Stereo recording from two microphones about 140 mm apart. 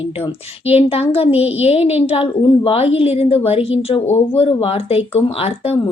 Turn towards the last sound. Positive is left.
turn(degrees=45)  # may be behind; listen again after turning